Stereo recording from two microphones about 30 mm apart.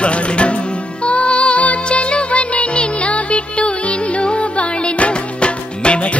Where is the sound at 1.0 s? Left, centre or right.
Left.